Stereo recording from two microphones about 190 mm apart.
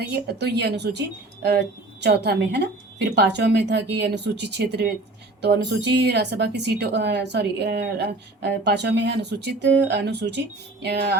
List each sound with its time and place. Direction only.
0.1 s speech: 60° right (ahead or behind)